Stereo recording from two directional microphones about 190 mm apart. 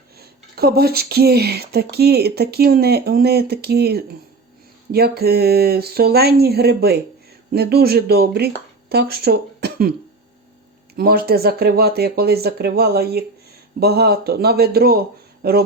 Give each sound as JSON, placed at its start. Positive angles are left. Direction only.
{"t": 0.2, "sound": "speech", "side_deg": -55}
{"t": 10.9, "sound": "speech", "side_deg": -55}